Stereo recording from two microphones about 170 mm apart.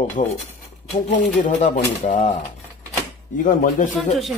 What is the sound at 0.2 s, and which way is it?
A man's voice, 50° left (ahead or behind).